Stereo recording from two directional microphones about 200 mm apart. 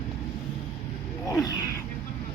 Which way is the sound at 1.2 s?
15° left (ahead or behind).